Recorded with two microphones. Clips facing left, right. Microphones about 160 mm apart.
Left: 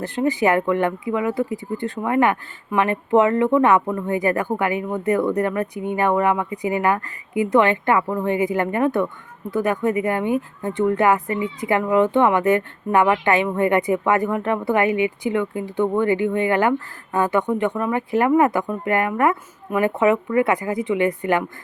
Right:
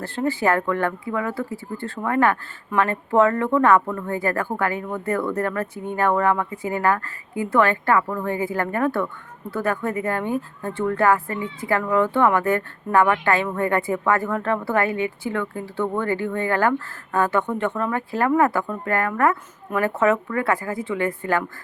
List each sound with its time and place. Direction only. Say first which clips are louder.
0.0 s speech: left 3 dB; 15° left (ahead or behind)